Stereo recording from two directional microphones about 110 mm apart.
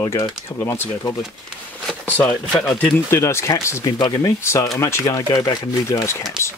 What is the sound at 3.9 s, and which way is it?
Speech, 40° left (ahead or behind).